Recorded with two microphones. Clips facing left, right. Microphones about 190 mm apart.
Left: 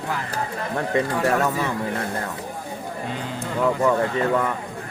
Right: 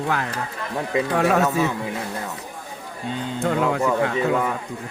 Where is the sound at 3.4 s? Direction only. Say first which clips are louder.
Even; 85° right.